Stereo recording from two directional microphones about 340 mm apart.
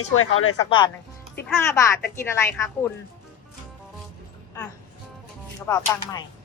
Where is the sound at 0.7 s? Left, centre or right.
Centre.